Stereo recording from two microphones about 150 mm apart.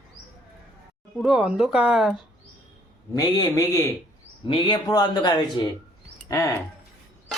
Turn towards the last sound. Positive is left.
turn(degrees=20)  # may be behind; listen again after turning